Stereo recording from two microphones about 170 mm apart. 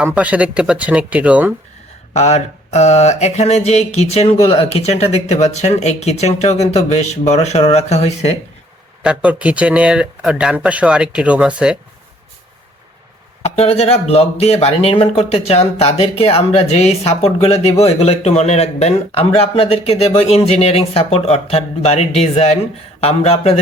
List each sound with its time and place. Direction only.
0.0 s speech: 10° right (ahead or behind)
2.1 s speech: 40° left (ahead or behind)
9.0 s speech: 10° right (ahead or behind)
13.4 s speech: 40° left (ahead or behind)